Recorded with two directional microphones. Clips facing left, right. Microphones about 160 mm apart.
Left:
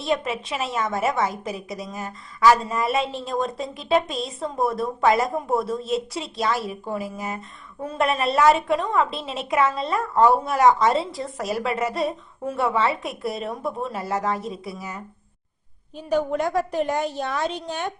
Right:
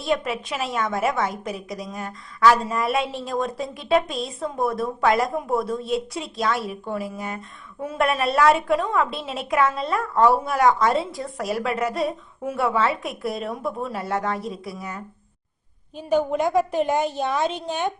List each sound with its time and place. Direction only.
0.0 s a woman's voice: centre (ahead or behind)
16.3 s a woman's voice: 20° right (ahead or behind)
17.0 s a woman's voice: centre (ahead or behind)